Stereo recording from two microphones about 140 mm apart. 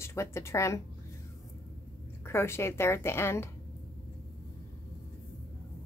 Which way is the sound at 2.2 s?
20° left (ahead or behind).